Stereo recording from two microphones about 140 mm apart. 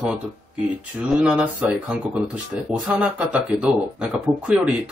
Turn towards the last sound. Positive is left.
turn(degrees=-5)  # may be behind; listen again after turning